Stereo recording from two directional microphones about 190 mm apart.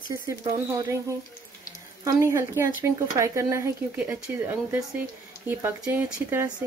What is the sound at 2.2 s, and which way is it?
Speech, 15° right (ahead or behind).